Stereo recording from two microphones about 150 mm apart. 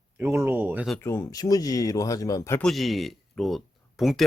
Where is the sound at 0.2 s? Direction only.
15° right (ahead or behind).